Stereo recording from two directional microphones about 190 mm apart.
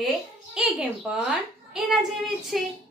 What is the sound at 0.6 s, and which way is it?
A woman's voice, 5° right (ahead or behind).